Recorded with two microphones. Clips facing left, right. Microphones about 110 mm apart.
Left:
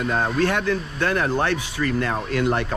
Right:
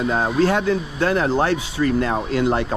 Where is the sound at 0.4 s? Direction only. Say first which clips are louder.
Right 3 dB; 30° right (ahead or behind).